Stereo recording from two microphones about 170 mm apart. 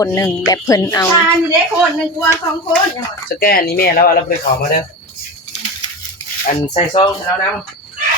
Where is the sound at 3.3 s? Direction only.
60° left (ahead or behind).